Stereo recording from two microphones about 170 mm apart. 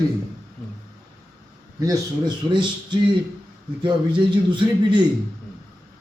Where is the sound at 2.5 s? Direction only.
25° right (ahead or behind).